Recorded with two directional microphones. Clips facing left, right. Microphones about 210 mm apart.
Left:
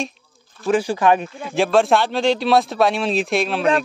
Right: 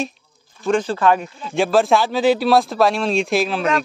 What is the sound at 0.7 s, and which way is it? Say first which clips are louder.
Speech: even; 10° left (ahead or behind).